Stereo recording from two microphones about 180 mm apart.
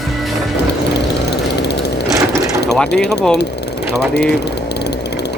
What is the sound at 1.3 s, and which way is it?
Lawn mower, 65° left (ahead or behind).